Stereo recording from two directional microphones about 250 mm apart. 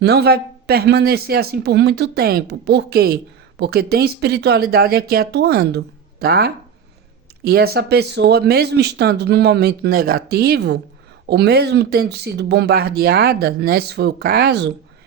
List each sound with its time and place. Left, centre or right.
0.0 s speech: right